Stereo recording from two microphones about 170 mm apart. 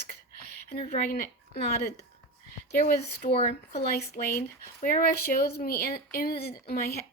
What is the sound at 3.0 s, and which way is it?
Speech, 70° left (ahead or behind).